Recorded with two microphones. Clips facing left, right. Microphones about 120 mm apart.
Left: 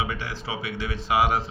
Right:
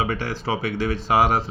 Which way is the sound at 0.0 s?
40° right (ahead or behind).